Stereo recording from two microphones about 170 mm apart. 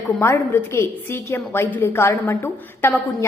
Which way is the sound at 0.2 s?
15° left (ahead or behind).